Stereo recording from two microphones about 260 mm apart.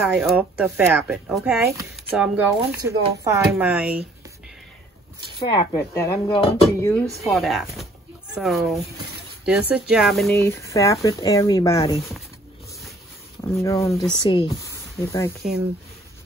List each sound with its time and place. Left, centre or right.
0.1 s speech: centre
5.5 s speech: left
5.9 s speech: centre
6.9 s speech: centre
13.6 s speech: centre
15.4 s speech: centre